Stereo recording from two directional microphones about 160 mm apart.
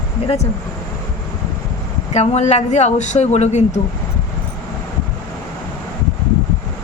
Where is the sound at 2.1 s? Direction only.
45° left (ahead or behind).